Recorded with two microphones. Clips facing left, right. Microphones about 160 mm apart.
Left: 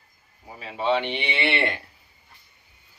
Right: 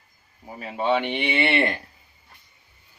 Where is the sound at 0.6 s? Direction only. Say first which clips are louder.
Right 1 dB; 50° right (ahead or behind).